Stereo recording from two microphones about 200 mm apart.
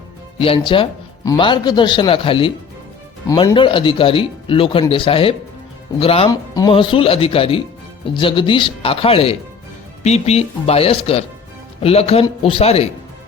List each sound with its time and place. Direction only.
0.3 s speech: 25° left (ahead or behind)